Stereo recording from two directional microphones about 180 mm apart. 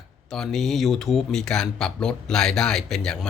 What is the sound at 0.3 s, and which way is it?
Speech, centre (ahead or behind).